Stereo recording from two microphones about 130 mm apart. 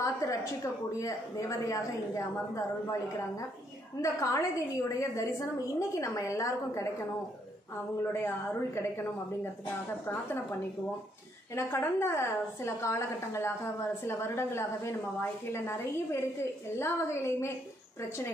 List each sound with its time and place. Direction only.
0.0 s a woman's voice: 25° left (ahead or behind)
8.0 s speech: 20° left (ahead or behind)
11.5 s speech: 20° left (ahead or behind)